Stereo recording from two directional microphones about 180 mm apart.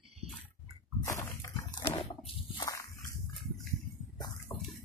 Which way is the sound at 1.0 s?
15° left (ahead or behind).